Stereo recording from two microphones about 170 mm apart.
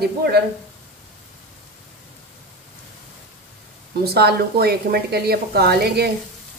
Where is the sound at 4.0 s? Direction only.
65° right (ahead or behind).